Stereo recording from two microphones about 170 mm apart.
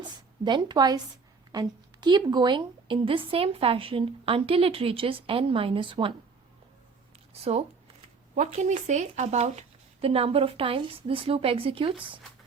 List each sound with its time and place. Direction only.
0.0 s a woman's voice: 25° right (ahead or behind)
8.4 s a woman's voice: 45° right (ahead or behind)